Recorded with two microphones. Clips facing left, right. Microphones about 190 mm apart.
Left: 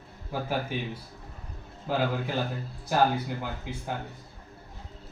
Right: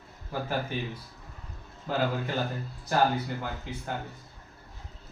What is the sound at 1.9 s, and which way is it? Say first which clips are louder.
Speech: left 1 dB; 10° left (ahead or behind).